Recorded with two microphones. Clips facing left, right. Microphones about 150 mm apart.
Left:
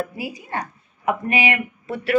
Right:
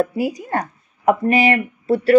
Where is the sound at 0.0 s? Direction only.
45° right (ahead or behind).